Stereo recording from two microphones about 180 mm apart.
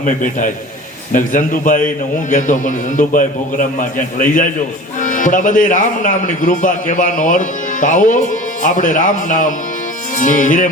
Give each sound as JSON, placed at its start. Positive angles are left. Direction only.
{"t": 0.0, "sound": "a man's voice", "side_deg": 45}